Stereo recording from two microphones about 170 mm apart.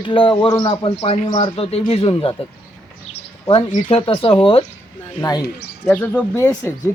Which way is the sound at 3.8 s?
30° left (ahead or behind).